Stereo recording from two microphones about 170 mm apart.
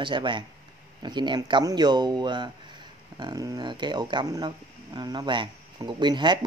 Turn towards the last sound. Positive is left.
turn(degrees=-25)  # may be behind; listen again after turning